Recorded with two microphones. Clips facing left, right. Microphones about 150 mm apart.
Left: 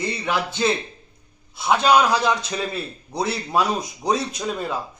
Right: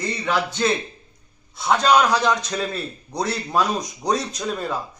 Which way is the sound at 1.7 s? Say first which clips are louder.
Even; 10° left (ahead or behind).